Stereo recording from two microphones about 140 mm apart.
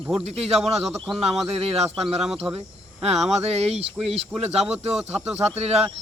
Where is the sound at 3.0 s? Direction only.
50° right (ahead or behind).